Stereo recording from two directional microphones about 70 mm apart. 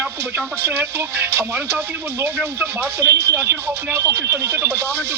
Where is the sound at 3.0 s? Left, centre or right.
Right.